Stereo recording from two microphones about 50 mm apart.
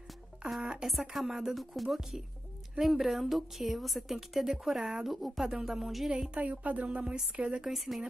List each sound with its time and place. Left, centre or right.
0.6 s speech: centre
0.8 s a woman's voice: centre
6.0 s speech: centre
6.4 s speech: right
7.6 s a woman's voice: centre